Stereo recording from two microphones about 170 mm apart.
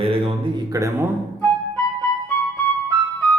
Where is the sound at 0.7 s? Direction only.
15° right (ahead or behind).